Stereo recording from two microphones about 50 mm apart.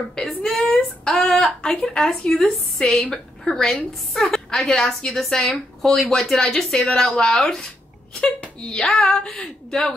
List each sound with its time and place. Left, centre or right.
0.2 s a woman's voice: centre